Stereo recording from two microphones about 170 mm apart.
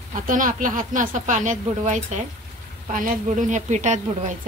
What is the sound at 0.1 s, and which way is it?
Speech, 50° right (ahead or behind).